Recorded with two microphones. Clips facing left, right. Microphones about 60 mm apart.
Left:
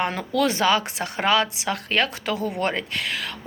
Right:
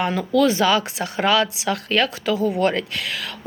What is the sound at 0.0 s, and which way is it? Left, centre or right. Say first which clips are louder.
A woman's voice: right 4 dB; left.